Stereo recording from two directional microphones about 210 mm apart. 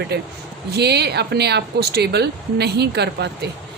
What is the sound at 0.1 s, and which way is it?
A woman's voice, 50° right (ahead or behind).